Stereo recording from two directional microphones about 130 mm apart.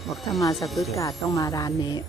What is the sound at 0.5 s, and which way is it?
Speech, centre (ahead or behind).